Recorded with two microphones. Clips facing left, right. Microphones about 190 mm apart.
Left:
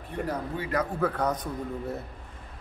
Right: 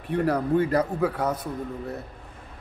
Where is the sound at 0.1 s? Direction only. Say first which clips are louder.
Right 9 dB; 70° right (ahead or behind).